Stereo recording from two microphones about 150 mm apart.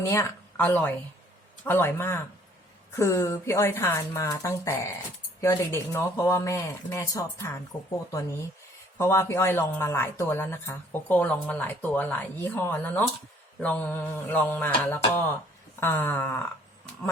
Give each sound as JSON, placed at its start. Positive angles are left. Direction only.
{"t": 0.1, "sound": "a woman's voice", "side_deg": 20}
{"t": 9.0, "sound": "a woman's voice", "side_deg": 20}